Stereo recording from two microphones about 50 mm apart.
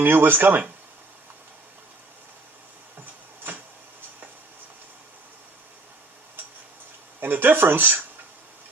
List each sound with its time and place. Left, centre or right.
0.0 s speech: right
7.2 s speech: right